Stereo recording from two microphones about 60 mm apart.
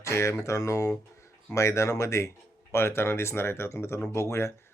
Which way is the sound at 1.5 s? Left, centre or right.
Left.